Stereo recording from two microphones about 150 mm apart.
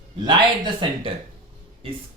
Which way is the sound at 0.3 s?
30° right (ahead or behind).